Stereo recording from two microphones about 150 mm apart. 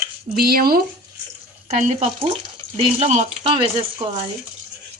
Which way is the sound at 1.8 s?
45° right (ahead or behind).